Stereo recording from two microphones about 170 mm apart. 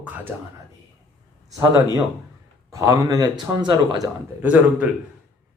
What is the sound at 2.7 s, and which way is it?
Speech, 20° right (ahead or behind).